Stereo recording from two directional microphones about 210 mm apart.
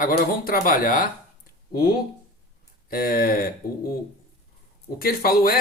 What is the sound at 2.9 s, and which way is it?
Speech, 45° left (ahead or behind).